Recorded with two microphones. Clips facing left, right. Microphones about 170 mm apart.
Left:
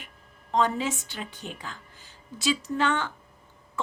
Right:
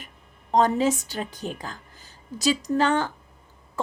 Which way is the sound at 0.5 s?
40° right (ahead or behind).